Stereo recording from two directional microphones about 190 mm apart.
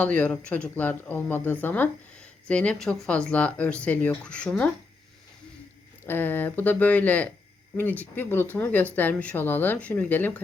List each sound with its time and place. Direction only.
0.0 s speech: 5° left (ahead or behind)
6.1 s speech: 10° left (ahead or behind)